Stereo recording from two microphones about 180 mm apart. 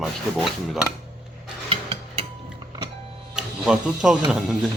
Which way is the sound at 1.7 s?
30° right (ahead or behind).